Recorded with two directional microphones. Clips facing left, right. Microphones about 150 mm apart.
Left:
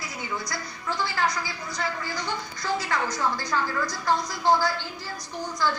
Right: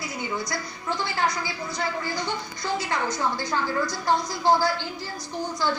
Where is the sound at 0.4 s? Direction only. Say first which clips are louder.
Right 2 dB; 25° right (ahead or behind).